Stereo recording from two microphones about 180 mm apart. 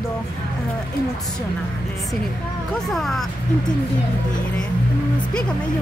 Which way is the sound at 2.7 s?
Centre (ahead or behind).